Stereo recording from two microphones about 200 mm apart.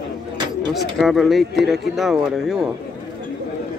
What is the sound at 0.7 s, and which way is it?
Speech, centre (ahead or behind).